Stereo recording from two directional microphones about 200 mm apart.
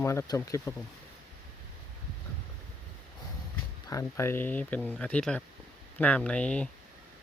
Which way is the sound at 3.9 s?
15° left (ahead or behind).